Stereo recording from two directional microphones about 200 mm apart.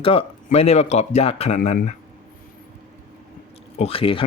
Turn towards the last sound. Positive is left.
turn(degrees=25)  # may be behind; listen again after turning